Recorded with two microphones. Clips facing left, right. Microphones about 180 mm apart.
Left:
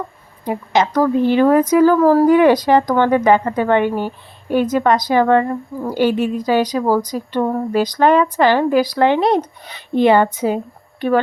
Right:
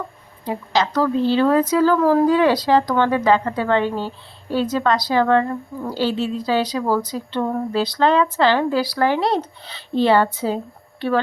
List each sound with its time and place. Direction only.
0.4 s a woman's voice: 20° left (ahead or behind)